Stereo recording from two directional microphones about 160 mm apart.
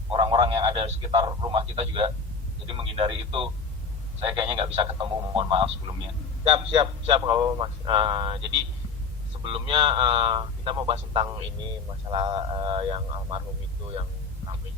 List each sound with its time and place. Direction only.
0.1 s a man's voice: 30° right (ahead or behind)
9.4 s a man's voice: 35° right (ahead or behind)
13.9 s hum: 30° right (ahead or behind)